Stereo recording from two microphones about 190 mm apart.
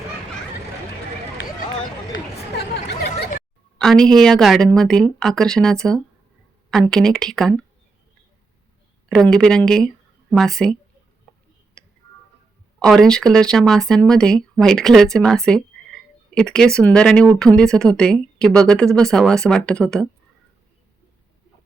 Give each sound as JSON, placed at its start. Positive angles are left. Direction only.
{"t": 2.5, "sound": "speech", "side_deg": 60}
{"t": 3.8, "sound": "a woman's voice", "side_deg": 5}
{"t": 9.0, "sound": "a woman's voice", "side_deg": 5}
{"t": 11.8, "sound": "tick", "side_deg": 5}
{"t": 12.8, "sound": "a woman's voice", "side_deg": 0}